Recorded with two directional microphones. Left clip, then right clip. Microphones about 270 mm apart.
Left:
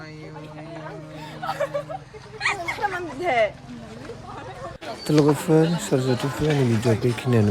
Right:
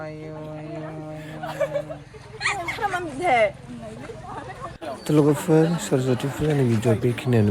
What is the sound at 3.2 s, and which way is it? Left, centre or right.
Speech, right.